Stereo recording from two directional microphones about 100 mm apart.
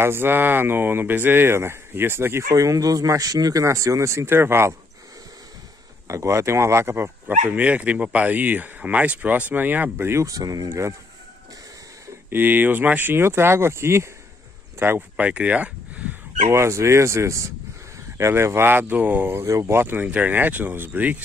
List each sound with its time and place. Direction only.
0.0 s speech: 20° right (ahead or behind)
6.0 s speech: 30° right (ahead or behind)
10.7 s speech: 25° right (ahead or behind)
12.3 s speech: 20° right (ahead or behind)
16.4 s speech: 30° right (ahead or behind)